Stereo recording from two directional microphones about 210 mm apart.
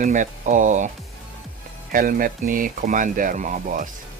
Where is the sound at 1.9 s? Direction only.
40° right (ahead or behind).